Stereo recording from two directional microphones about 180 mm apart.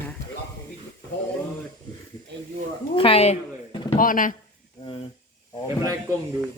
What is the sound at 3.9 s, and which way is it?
Speech, 50° left (ahead or behind).